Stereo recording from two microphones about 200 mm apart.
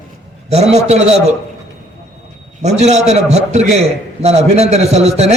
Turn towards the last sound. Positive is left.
turn(degrees=-35)  # may be behind; listen again after turning